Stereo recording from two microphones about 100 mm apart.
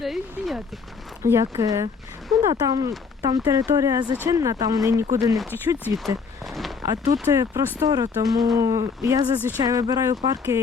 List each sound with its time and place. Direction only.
0.0 s speech: centre (ahead or behind)
1.2 s speech: 30° right (ahead or behind)
6.4 s a sound: centre (ahead or behind)
6.8 s speech: 40° right (ahead or behind)